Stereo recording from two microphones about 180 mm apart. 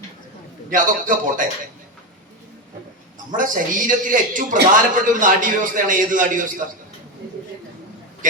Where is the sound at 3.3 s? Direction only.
45° right (ahead or behind).